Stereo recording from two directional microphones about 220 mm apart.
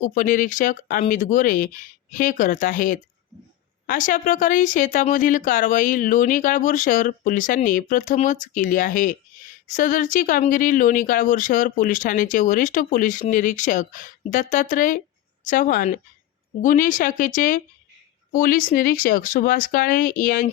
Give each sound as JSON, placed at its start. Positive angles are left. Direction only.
{"t": 0.0, "sound": "speech", "side_deg": 40}